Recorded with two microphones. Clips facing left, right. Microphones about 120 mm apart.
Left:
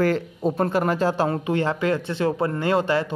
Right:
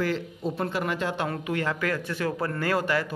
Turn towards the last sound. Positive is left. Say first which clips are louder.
# left 5 dB
turn(degrees=25)  # may be behind; listen again after turning